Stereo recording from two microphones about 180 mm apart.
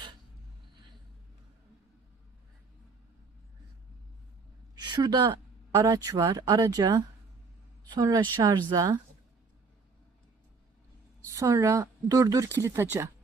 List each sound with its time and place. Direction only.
4.7 s a woman's voice: 25° right (ahead or behind)
11.3 s speech: 15° right (ahead or behind)